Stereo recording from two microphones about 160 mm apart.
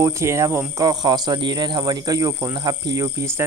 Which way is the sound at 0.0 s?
20° right (ahead or behind).